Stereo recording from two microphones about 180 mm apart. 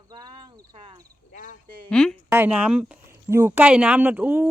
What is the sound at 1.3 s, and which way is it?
Speech, 45° left (ahead or behind).